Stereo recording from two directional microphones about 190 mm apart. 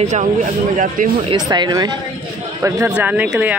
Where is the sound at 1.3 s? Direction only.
25° right (ahead or behind).